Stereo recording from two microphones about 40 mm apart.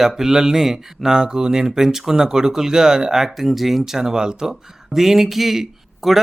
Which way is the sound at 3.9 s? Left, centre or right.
Centre.